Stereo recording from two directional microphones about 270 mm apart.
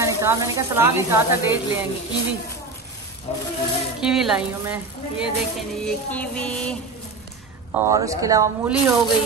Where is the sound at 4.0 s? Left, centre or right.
Centre.